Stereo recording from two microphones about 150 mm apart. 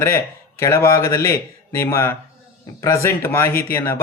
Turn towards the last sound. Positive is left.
turn(degrees=15)  # may be behind; listen again after turning